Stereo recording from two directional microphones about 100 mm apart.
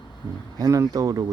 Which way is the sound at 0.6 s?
35° right (ahead or behind).